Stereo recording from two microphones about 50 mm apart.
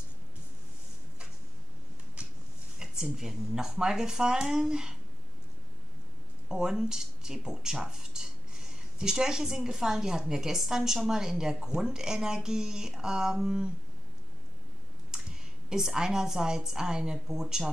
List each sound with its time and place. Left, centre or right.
2.2 s a sound: right
2.8 s speech: centre
6.5 s speech: centre
15.0 s speech: centre